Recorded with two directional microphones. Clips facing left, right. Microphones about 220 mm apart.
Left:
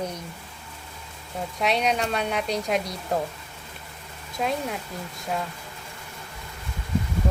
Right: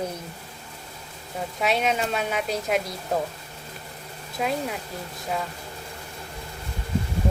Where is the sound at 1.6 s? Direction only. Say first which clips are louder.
Even; 5° right (ahead or behind).